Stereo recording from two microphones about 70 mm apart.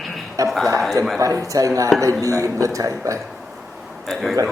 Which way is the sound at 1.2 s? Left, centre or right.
Right.